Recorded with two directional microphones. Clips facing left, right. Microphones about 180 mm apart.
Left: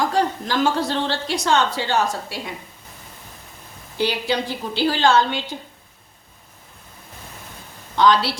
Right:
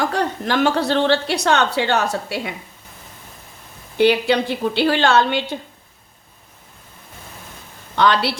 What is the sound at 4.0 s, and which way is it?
A woman's voice, 60° right (ahead or behind).